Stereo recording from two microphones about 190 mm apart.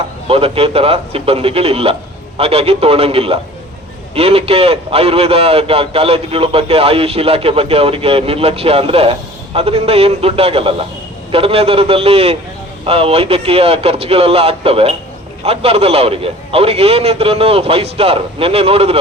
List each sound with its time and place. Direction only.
0.3 s a man's voice: 30° right (ahead or behind)